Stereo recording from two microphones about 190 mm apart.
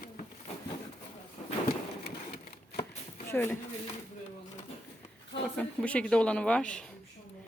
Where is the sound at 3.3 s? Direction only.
10° left (ahead or behind).